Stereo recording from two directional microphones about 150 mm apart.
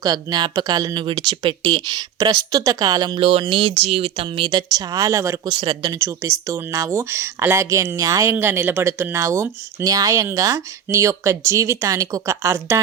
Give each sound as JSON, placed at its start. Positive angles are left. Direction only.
{"t": 0.0, "sound": "speech", "side_deg": -25}
{"t": 3.2, "sound": "speech", "side_deg": -40}
{"t": 5.5, "sound": "speech", "side_deg": -30}